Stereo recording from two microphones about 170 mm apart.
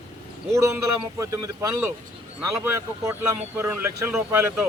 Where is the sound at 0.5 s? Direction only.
20° right (ahead or behind).